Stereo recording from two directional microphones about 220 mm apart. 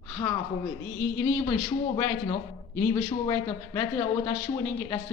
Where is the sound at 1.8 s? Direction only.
25° left (ahead or behind).